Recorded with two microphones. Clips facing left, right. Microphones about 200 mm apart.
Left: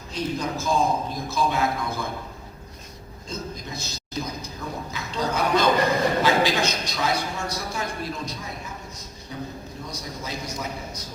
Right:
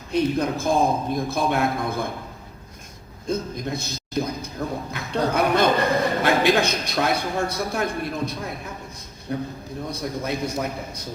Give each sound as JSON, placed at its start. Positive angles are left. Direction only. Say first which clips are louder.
{"t": 0.1, "sound": "a man's voice", "louder": "right 6 dB", "side_deg": -55}
{"t": 3.2, "sound": "a sound", "louder": "right 8 dB", "side_deg": -55}
{"t": 6.2, "sound": "a man's voice", "louder": "right 2 dB", "side_deg": -60}